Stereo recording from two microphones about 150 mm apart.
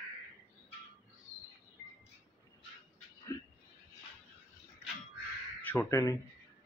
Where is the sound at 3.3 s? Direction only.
20° left (ahead or behind).